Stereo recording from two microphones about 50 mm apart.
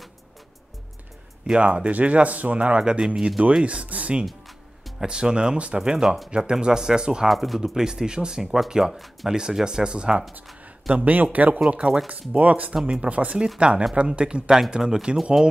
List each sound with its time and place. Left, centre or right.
1.5 s speech: right
3.6 s speech: right
5.8 s speech: centre
7.2 s speech: centre
11.3 s speech: right; by 15.5 s centre